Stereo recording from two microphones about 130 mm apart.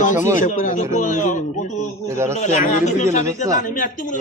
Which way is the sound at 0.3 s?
75° left (ahead or behind).